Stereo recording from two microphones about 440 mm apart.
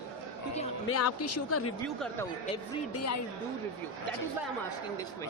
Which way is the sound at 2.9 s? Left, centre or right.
Left.